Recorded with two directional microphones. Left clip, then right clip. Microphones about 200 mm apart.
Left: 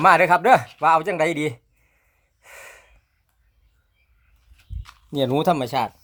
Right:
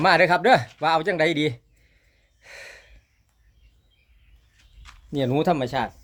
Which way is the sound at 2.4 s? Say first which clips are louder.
Right 1 dB; 5° left (ahead or behind).